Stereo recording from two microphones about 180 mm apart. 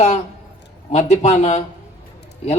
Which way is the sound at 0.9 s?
40° left (ahead or behind).